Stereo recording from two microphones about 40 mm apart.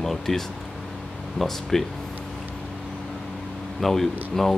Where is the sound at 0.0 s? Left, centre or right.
Centre.